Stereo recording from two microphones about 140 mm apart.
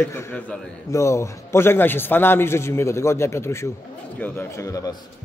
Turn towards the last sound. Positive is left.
turn(degrees=25)  # may be behind; listen again after turning